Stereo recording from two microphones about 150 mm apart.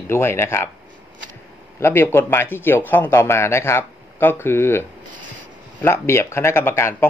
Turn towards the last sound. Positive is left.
turn(degrees=15)  # may be behind; listen again after turning